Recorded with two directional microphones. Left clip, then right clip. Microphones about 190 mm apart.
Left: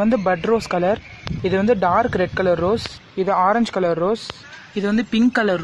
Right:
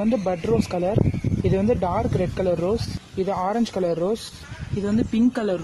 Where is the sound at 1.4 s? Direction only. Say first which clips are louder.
Left 5 dB; centre (ahead or behind).